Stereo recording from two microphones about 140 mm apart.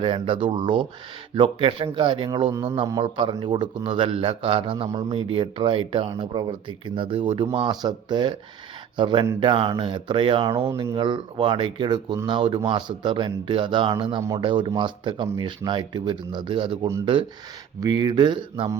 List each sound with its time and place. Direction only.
0.0 s speech: 40° right (ahead or behind)